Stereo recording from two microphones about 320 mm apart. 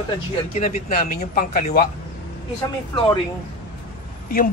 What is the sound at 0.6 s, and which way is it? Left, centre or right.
Speech, left.